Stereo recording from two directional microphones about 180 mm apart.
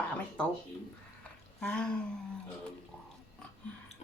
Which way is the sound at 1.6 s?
5° left (ahead or behind).